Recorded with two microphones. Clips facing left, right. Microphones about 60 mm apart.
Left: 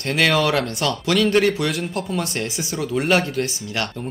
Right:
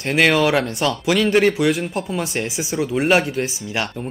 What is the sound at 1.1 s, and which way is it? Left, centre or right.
Speech, centre.